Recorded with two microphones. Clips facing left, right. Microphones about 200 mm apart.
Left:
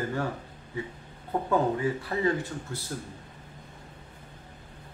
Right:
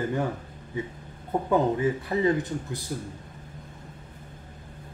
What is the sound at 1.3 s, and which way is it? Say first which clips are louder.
Speech: right 2 dB; 25° right (ahead or behind).